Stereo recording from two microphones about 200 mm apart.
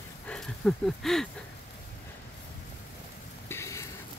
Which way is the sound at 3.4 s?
15° left (ahead or behind).